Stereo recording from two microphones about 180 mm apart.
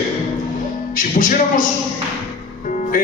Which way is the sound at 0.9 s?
50° left (ahead or behind).